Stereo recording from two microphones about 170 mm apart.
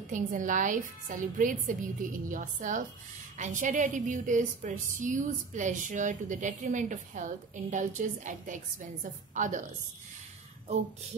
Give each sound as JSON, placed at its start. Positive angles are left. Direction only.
{"t": 0.1, "sound": "a woman's voice", "side_deg": -50}